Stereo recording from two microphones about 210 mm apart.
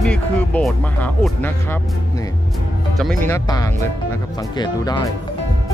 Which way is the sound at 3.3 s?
15° left (ahead or behind).